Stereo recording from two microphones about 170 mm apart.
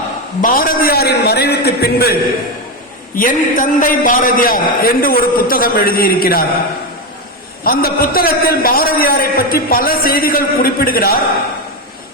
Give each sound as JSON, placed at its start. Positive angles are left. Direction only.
{"t": 0.4, "sound": "a man's voice", "side_deg": 55}
{"t": 3.2, "sound": "a man's voice", "side_deg": 55}
{"t": 7.6, "sound": "a man's voice", "side_deg": 60}